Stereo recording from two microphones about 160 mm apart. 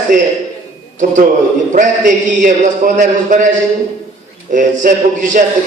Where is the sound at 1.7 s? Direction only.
55° right (ahead or behind).